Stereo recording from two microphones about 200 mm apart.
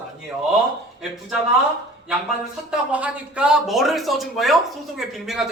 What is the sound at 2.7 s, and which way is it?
Speech, 5° right (ahead or behind).